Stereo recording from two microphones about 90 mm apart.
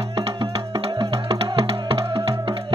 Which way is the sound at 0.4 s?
90° right.